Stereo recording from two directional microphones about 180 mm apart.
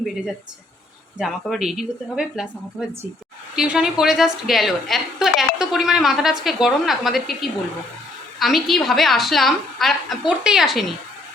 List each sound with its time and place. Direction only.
1.2 s a woman's voice: centre (ahead or behind)
8.4 s a woman's voice: centre (ahead or behind)